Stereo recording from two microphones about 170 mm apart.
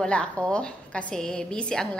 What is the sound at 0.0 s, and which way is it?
A woman's voice, 5° left (ahead or behind).